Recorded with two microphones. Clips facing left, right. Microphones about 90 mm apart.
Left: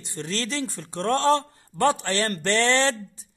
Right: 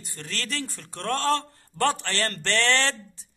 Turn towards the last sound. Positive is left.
turn(degrees=15)  # may be behind; listen again after turning